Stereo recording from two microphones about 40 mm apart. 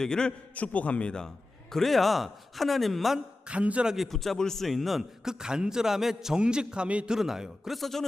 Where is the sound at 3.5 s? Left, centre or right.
Right.